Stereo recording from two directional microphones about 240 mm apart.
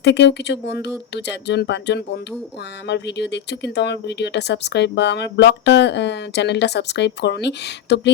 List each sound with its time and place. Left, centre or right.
0.0 s speech: left